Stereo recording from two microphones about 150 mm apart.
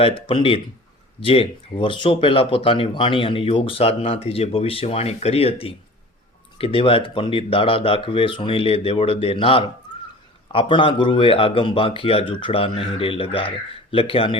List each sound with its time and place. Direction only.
0.0 s speech: 40° left (ahead or behind)